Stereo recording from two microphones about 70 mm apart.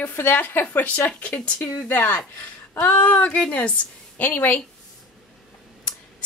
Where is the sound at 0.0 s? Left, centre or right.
Left.